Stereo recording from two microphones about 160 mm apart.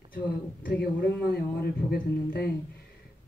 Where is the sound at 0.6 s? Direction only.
70° left (ahead or behind).